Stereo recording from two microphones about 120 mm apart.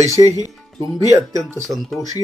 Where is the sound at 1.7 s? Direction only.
Centre (ahead or behind).